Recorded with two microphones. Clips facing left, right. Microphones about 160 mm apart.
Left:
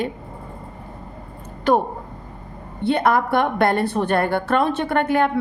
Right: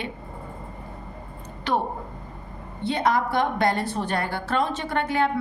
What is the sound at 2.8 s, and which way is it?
A woman's voice, 55° left (ahead or behind).